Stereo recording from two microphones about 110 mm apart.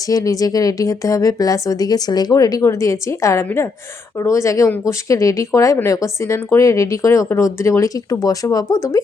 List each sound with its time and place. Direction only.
0.1 s a woman's voice: 35° left (ahead or behind)